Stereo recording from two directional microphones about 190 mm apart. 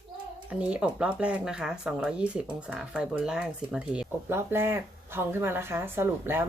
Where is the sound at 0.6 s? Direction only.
5° right (ahead or behind).